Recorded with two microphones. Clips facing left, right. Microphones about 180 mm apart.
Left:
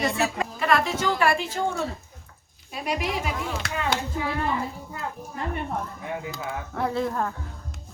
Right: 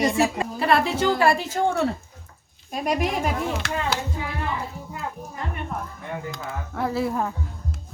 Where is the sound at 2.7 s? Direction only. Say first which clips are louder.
Right 4 dB; 45° right (ahead or behind).